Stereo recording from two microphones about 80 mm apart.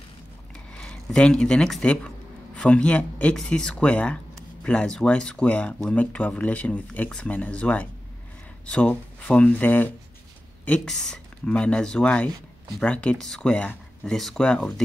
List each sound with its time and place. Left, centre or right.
0.7 s speech: centre
10.9 s speech: centre